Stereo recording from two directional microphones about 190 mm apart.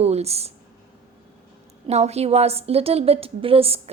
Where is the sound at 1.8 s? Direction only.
35° right (ahead or behind).